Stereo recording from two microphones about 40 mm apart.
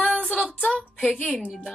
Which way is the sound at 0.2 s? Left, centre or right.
Centre.